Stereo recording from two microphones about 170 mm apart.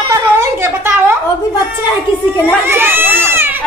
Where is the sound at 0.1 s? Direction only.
15° right (ahead or behind).